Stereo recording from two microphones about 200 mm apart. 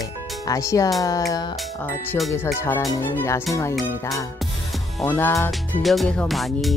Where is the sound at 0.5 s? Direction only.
15° left (ahead or behind).